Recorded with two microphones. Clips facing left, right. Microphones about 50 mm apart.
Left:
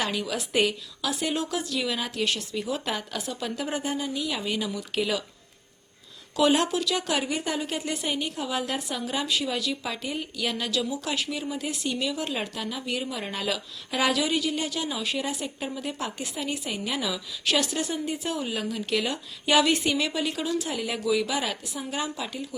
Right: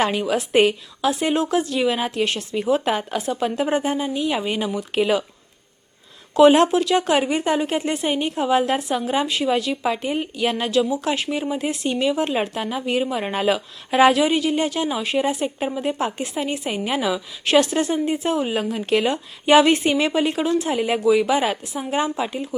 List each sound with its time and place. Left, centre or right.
0.0 s a woman's voice: right
6.3 s a woman's voice: right